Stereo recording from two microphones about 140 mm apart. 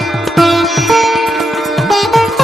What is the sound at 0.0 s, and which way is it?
Music, centre (ahead or behind).